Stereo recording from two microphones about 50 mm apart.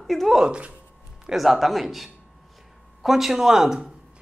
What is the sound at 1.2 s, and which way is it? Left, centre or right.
Speech, centre.